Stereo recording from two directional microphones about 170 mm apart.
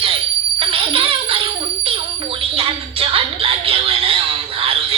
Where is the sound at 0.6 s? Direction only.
35° right (ahead or behind).